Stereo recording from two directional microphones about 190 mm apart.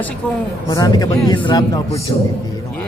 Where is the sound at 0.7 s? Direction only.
20° left (ahead or behind).